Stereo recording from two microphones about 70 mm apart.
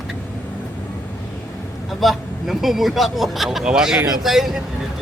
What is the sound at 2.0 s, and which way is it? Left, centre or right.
Speech, centre.